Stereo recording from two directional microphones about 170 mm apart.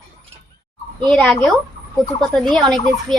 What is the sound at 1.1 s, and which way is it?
Speech, 5° left (ahead or behind).